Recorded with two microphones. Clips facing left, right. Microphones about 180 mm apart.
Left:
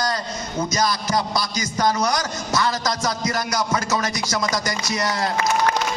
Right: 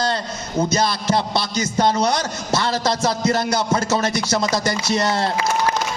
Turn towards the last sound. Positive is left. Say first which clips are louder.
# right 4 dB
turn(degrees=-30)  # may be behind; listen again after turning